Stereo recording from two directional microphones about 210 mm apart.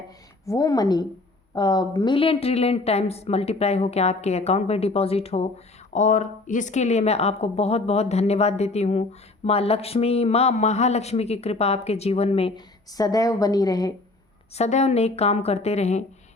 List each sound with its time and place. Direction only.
0.4 s a woman's voice: 15° left (ahead or behind)
14.5 s a woman's voice: 30° left (ahead or behind)